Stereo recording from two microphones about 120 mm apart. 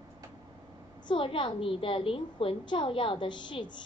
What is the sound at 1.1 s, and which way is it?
A woman's voice, 45° left (ahead or behind).